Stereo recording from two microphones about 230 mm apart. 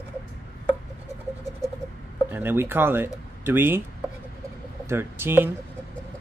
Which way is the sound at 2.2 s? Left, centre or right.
Centre.